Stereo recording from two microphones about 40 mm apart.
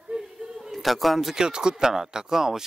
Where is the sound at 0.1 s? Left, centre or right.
Right.